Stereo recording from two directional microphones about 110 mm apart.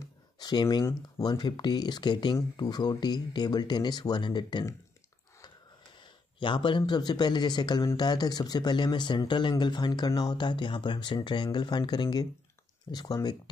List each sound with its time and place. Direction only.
0.4 s speech: 40° left (ahead or behind)
5.9 s a sound: 50° left (ahead or behind)
6.9 s speech: 40° left (ahead or behind)